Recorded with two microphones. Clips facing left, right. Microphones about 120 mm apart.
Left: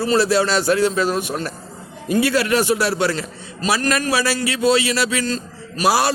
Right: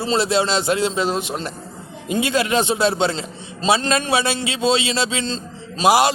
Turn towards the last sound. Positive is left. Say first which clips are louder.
# right 2 dB
turn(degrees=-20)  # may be behind; listen again after turning